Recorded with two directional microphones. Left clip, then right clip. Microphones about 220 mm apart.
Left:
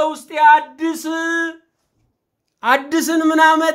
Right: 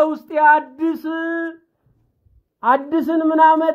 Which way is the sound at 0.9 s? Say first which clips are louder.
Left 1 dB; 10° right (ahead or behind).